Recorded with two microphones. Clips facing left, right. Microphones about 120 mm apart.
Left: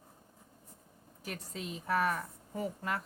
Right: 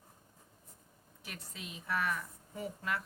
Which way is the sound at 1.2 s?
40° left (ahead or behind).